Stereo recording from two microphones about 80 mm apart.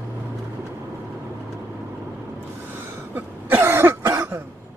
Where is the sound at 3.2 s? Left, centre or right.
Right.